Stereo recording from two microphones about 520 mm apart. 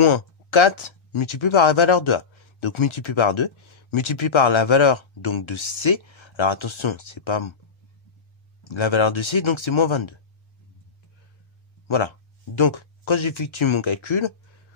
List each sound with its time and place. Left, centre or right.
0.0 s speech: left
8.6 s speech: left
12.5 s speech: left